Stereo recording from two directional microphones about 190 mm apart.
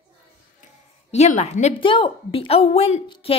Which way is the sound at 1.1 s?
35° left (ahead or behind).